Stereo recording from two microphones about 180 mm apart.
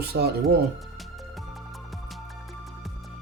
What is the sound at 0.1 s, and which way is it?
Speech, 60° right (ahead or behind).